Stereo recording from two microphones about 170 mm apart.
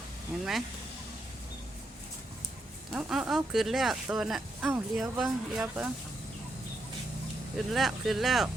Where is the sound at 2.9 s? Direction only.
5° right (ahead or behind).